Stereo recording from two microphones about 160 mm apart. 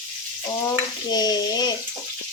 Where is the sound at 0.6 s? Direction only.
25° left (ahead or behind).